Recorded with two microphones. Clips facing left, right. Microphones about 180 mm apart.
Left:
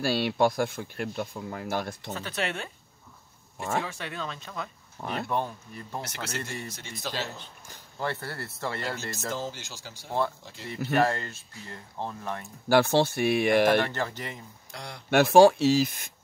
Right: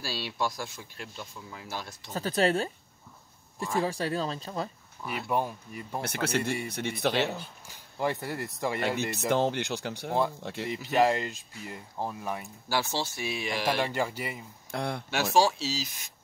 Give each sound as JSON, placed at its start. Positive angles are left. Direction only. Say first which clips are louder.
{"t": 0.0, "sound": "speech", "louder": "left 8 dB", "side_deg": 60}
{"t": 2.1, "sound": "speech", "louder": "right 8 dB", "side_deg": -35}
{"t": 3.8, "sound": "speech", "louder": "right 6 dB", "side_deg": -35}
{"t": 5.0, "sound": "speech", "louder": "left 3 dB", "side_deg": 60}
{"t": 5.3, "sound": "speech", "louder": "right 5 dB", "side_deg": -10}
{"t": 6.0, "sound": "speech", "louder": "right 7 dB", "side_deg": -55}
{"t": 8.0, "sound": "speech", "louder": "right 3 dB", "side_deg": -15}
{"t": 9.3, "sound": "speech", "louder": "right 11 dB", "side_deg": -65}
{"t": 11.0, "sound": "speech", "louder": "right 2 dB", "side_deg": -15}
{"t": 12.6, "sound": "speech", "louder": "left 10 dB", "side_deg": 60}
{"t": 13.7, "sound": "speech", "louder": "left 2 dB", "side_deg": -10}
{"t": 14.7, "sound": "speech", "louder": "right 10 dB", "side_deg": -55}
{"t": 15.0, "sound": "speech", "louder": "left 9 dB", "side_deg": 55}